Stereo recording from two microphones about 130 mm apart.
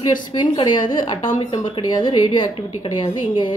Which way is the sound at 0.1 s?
35° left (ahead or behind).